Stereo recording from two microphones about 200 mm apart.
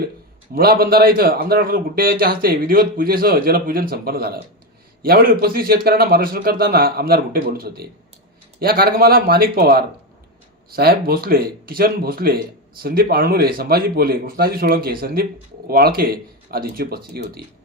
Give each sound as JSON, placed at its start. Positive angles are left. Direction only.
{"t": 0.5, "sound": "speech", "side_deg": -50}